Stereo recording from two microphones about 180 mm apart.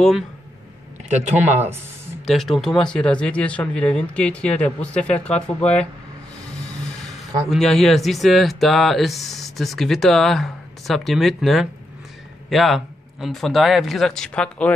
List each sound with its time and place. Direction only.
1.0 s speech: 35° right (ahead or behind)
2.2 s speech: centre (ahead or behind)
7.5 s speech: centre (ahead or behind)